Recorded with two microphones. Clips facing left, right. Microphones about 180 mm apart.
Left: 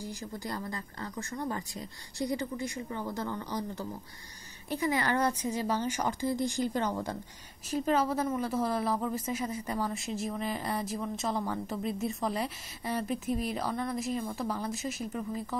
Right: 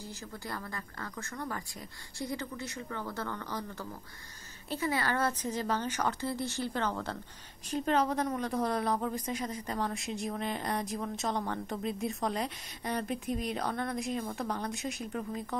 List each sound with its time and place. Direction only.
0.0 s a woman's voice: 15° left (ahead or behind)